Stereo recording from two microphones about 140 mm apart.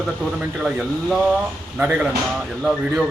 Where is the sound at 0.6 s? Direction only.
5° right (ahead or behind).